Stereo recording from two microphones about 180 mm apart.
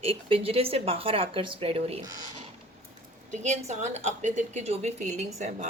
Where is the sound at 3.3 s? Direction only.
40° right (ahead or behind).